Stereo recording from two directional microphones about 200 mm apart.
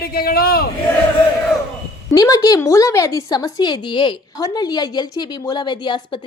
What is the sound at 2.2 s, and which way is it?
A woman's voice, 15° left (ahead or behind).